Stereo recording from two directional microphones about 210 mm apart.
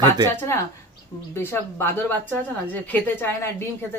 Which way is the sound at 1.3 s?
10° left (ahead or behind).